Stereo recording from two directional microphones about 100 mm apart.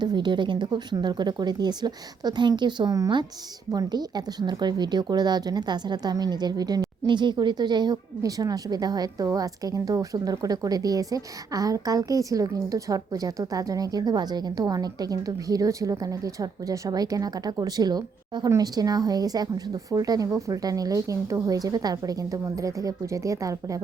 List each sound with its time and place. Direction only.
0.0 s a woman's voice: 45° right (ahead or behind)